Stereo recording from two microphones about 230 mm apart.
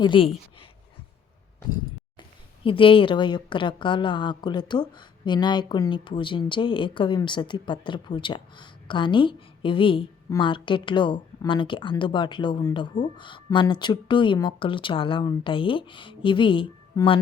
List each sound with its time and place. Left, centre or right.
0.0 s a woman's voice: left
2.6 s a woman's voice: left